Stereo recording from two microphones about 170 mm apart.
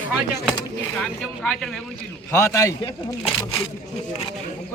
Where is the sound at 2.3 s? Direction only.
15° left (ahead or behind).